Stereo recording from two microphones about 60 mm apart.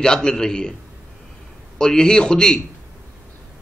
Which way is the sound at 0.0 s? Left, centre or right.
Centre.